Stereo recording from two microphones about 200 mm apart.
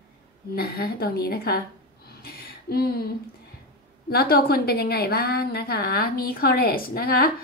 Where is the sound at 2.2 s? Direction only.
50° left (ahead or behind).